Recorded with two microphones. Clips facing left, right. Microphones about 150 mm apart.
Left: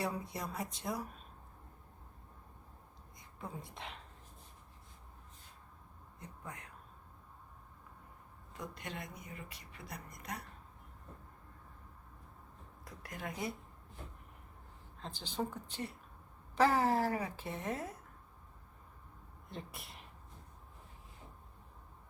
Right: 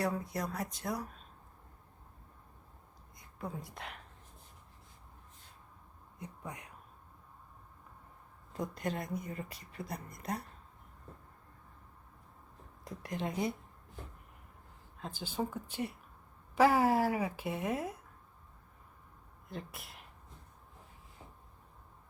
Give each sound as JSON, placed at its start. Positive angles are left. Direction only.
{"t": 0.0, "sound": "speech", "side_deg": 5}
{"t": 3.6, "sound": "speech", "side_deg": -5}
{"t": 6.1, "sound": "a sound", "side_deg": -15}
{"t": 8.5, "sound": "a woman's voice", "side_deg": -40}
{"t": 12.8, "sound": "speech", "side_deg": -25}
{"t": 14.9, "sound": "speech", "side_deg": -5}
{"t": 19.5, "sound": "speech", "side_deg": 0}